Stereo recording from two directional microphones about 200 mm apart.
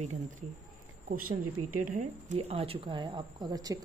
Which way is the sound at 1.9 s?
35° right (ahead or behind).